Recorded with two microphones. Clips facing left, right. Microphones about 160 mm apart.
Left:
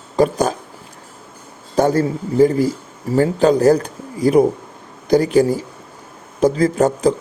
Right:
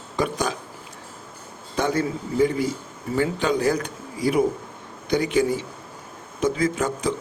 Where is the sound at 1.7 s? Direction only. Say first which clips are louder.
Left 8 dB; 40° left (ahead or behind).